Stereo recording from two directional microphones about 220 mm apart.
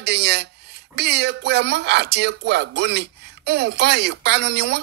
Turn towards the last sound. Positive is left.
turn(degrees=-50)  # may be behind; listen again after turning